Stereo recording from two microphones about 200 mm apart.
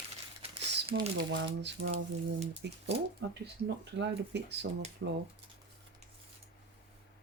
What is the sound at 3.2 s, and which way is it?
Speech, 60° right (ahead or behind).